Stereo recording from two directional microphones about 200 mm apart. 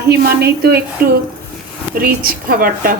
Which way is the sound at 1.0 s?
45° right (ahead or behind).